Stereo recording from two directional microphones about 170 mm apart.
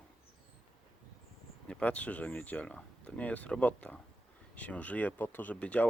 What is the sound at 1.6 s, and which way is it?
Speech, 5° left (ahead or behind).